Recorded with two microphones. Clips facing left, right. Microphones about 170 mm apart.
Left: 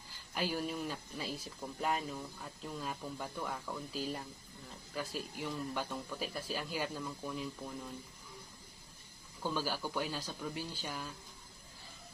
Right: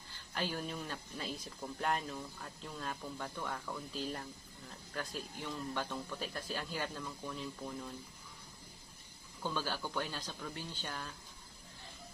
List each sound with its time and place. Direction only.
0.3 s speech: 10° left (ahead or behind)
9.4 s speech: 10° left (ahead or behind)